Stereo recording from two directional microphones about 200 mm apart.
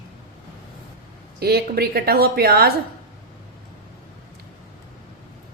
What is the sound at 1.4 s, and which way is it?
A woman's voice, 50° right (ahead or behind).